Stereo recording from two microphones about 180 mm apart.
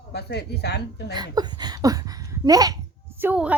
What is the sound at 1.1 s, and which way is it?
Speech, 25° right (ahead or behind).